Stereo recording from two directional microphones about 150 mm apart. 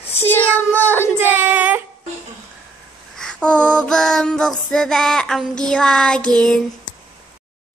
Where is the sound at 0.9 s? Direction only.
15° right (ahead or behind).